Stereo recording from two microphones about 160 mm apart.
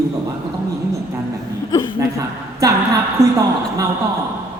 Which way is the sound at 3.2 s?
20° right (ahead or behind).